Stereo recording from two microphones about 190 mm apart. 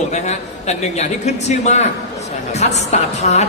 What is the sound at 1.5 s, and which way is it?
A woman's voice, 35° left (ahead or behind).